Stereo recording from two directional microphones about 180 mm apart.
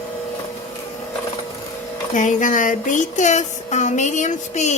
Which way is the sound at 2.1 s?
45° left (ahead or behind).